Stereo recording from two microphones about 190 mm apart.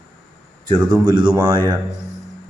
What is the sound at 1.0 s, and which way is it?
Speech, 25° right (ahead or behind).